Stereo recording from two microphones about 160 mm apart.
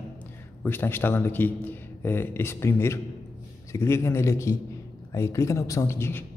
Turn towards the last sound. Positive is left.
turn(degrees=15)  # may be behind; listen again after turning